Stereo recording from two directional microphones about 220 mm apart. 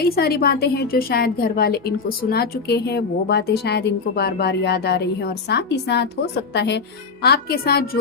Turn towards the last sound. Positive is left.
turn(degrees=45)  # may be behind; listen again after turning